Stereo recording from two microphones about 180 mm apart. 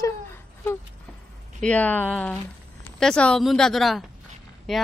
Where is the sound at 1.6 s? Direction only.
5° left (ahead or behind).